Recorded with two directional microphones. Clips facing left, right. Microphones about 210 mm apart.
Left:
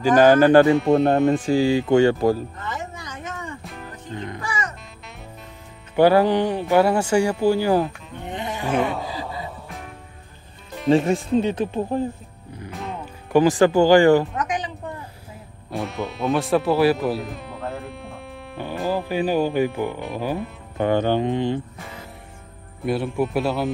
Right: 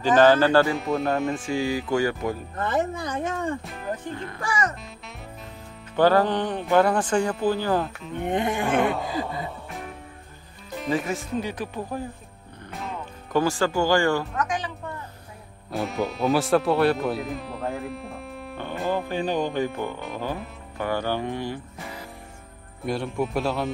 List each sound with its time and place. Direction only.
0.0 s speech: 10° left (ahead or behind)
1.3 s speech: 35° left (ahead or behind)
2.5 s a sound: 55° right (ahead or behind)
4.1 s music: 20° left (ahead or behind)
5.9 s speech: 10° left (ahead or behind)
8.3 s a sound: 55° right (ahead or behind)
8.8 s a sound: centre (ahead or behind)
10.9 s speech: 25° left (ahead or behind)
13.3 s speech: 15° left (ahead or behind)
15.7 s speech: centre (ahead or behind)
20.7 s speech: 20° left (ahead or behind)
22.8 s speech: 5° left (ahead or behind)